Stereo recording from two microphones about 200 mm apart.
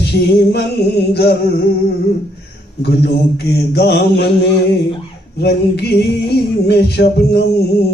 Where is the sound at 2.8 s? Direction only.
55° left (ahead or behind).